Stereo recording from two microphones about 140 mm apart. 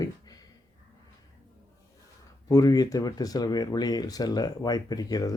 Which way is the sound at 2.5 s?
25° left (ahead or behind).